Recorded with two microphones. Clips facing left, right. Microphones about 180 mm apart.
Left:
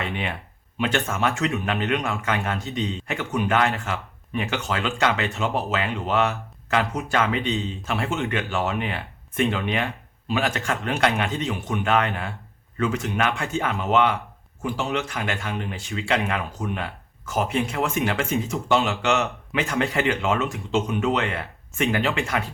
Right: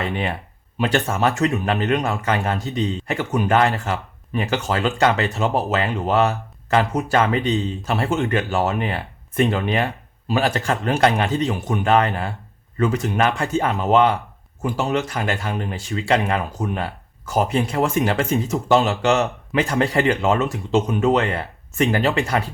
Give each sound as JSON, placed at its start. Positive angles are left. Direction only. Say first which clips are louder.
{"t": 0.0, "sound": "speech", "louder": "right 5 dB", "side_deg": -40}